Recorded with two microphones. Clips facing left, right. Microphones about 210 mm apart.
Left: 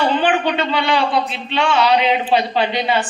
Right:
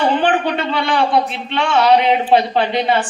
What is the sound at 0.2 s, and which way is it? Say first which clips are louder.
A man's voice: right 1 dB; 55° right (ahead or behind).